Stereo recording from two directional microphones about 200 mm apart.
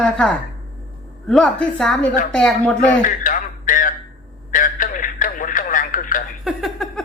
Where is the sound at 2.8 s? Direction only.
40° left (ahead or behind).